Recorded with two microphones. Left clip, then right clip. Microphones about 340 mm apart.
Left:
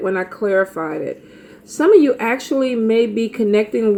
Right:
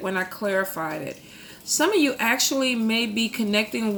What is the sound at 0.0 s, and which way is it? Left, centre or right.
Speech, right.